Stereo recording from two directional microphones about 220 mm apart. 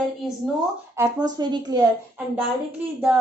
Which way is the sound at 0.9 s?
15° right (ahead or behind).